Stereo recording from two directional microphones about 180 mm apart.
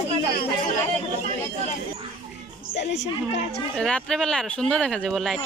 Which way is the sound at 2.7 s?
75° left (ahead or behind).